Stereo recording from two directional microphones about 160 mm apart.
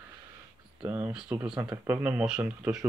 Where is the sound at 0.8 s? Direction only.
10° right (ahead or behind).